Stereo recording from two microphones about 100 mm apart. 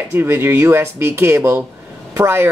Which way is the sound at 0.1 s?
25° right (ahead or behind).